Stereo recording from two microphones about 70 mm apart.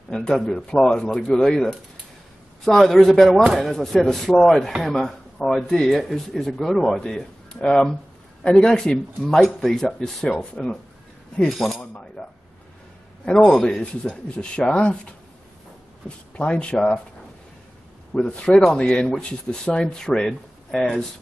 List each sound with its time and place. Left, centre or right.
0.1 s speech: centre
14.6 s speech: centre
16.3 s speech: centre
18.1 s speech: centre